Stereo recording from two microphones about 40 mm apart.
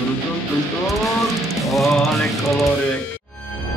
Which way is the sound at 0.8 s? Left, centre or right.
Centre.